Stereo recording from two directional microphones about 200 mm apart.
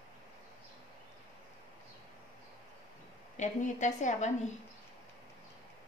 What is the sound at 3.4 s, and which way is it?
A woman's voice, 40° left (ahead or behind).